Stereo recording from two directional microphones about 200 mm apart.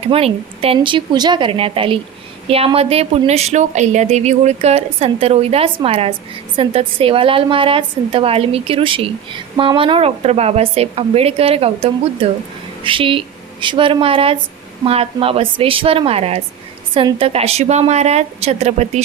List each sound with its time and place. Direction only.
0.0 s a woman's voice: 30° right (ahead or behind)